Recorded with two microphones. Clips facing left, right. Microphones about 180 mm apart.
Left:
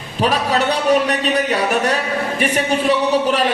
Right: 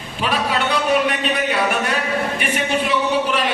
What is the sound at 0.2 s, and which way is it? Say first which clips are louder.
A man's voice: left 4 dB; 40° left (ahead or behind).